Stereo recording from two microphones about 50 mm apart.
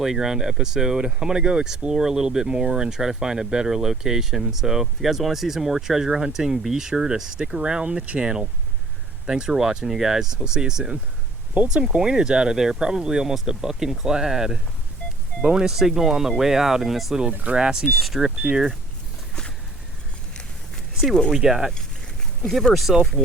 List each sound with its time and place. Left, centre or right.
0.0 s speech: centre; by 8.3 s right
9.2 s speech: centre
17.5 s speech: centre
17.9 s speech: centre
21.3 s speech: centre
22.4 s speech: centre